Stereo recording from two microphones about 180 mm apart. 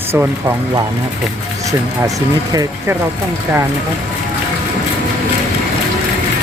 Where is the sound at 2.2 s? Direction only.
20° right (ahead or behind).